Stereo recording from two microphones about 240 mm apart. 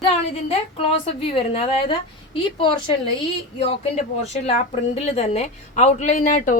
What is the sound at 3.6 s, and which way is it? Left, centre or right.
A woman's voice, left.